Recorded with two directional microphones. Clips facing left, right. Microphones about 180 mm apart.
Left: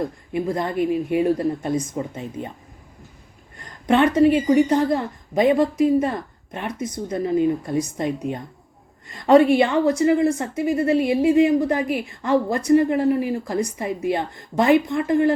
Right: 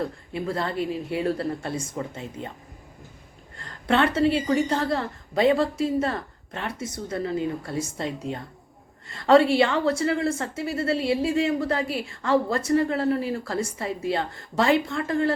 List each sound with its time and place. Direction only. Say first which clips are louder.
0.0 s a woman's voice: left 4 dB; 15° left (ahead or behind)
3.6 s a woman's voice: left 5 dB; 15° left (ahead or behind)